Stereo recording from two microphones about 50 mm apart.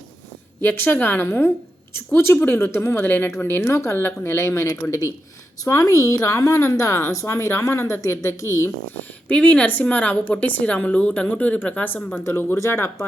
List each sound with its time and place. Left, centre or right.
0.6 s a woman's voice: left
1.2 s speech: left
3.0 s a woman's voice: left
3.9 s a woman's voice: left
7.3 s speech: left
9.3 s a woman's voice: left
12.2 s speech: left
12.5 s speech: left